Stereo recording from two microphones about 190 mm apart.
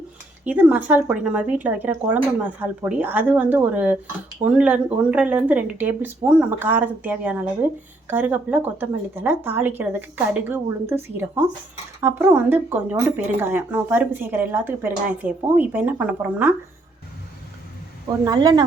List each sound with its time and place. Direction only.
0.4 s speech: 5° right (ahead or behind)
18.3 s speech: 20° right (ahead or behind)